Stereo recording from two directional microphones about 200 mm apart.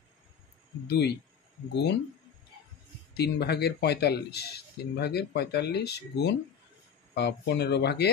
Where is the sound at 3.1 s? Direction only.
55° left (ahead or behind).